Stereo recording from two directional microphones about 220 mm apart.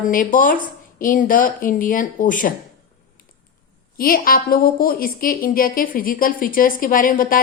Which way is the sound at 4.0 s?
40° left (ahead or behind).